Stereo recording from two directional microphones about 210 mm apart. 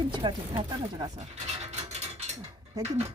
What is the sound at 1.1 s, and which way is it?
Mechanisms, 30° right (ahead or behind).